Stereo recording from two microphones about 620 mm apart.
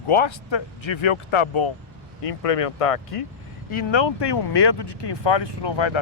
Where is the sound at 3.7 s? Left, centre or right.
Left.